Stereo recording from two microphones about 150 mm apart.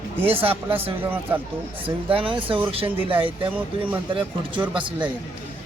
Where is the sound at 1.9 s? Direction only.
35° right (ahead or behind).